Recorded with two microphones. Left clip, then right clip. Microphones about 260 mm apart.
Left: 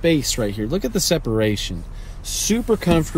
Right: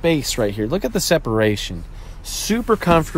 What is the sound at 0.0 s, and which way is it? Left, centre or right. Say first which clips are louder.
Speech: right 1 dB; right.